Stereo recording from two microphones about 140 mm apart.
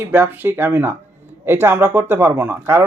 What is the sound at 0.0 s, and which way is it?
A man's voice, 15° right (ahead or behind).